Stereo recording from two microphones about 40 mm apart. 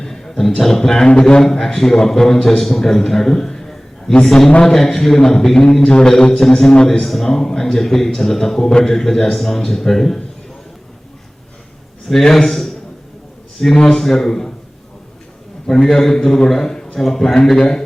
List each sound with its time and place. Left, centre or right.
0.0 s a sound: centre
0.6 s a man's voice: centre
5.7 s mantra: left
7.0 s a man's voice: centre
12.0 s a man's voice: centre
15.9 s a man's voice: centre